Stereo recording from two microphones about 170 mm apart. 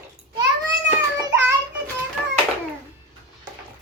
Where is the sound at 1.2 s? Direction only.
15° right (ahead or behind).